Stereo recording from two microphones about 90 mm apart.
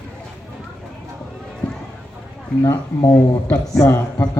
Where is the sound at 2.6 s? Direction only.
45° left (ahead or behind).